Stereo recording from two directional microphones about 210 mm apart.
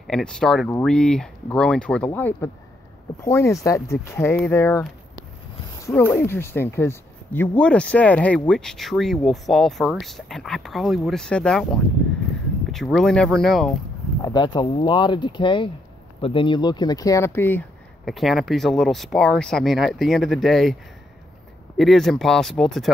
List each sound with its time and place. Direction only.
0.0 s speech: 5° left (ahead or behind)
5.8 s a sound: 15° left (ahead or behind)
6.1 s speech: 10° left (ahead or behind)
14.2 s speech: 20° left (ahead or behind); by 20.7 s centre (ahead or behind)
21.7 s speech: centre (ahead or behind)